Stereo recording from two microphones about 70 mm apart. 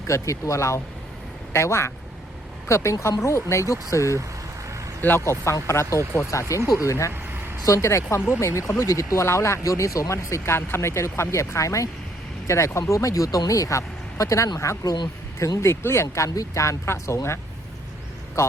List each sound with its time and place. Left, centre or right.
0.1 s speech: left
5.0 s speech: left
7.1 s vehicle: right
7.6 s speech: left
14.8 s speech: left
15.4 s speech: left